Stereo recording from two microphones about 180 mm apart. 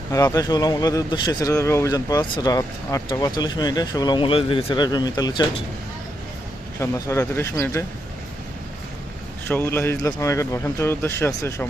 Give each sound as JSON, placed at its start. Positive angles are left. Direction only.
{"t": 0.1, "sound": "speech", "side_deg": 20}
{"t": 6.7, "sound": "a man's voice", "side_deg": 15}
{"t": 9.5, "sound": "a man's voice", "side_deg": 10}